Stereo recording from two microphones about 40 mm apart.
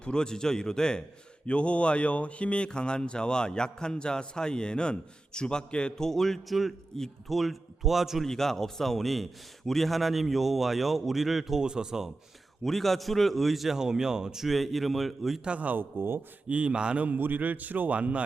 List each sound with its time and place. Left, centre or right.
0.0 s a man's voice: left
1.5 s speech: left
6.1 s a man's voice: centre
7.3 s a man's voice: centre
8.2 s a man's voice: centre
11.6 s a man's voice: centre
12.6 s a man's voice: centre
13.7 s a man's voice: centre
14.4 s a man's voice: centre
15.4 s speech: right
15.7 s speech: right
16.5 s a man's voice: right
17.2 s a man's voice: right